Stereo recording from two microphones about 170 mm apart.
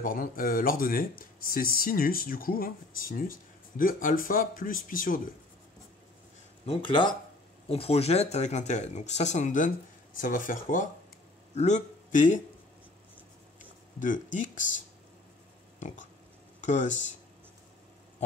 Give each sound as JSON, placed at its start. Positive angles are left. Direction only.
{"t": 0.0, "sound": "speech", "side_deg": 55}
{"t": 6.6, "sound": "speech", "side_deg": 30}
{"t": 13.9, "sound": "speech", "side_deg": 50}
{"t": 16.6, "sound": "speech", "side_deg": 45}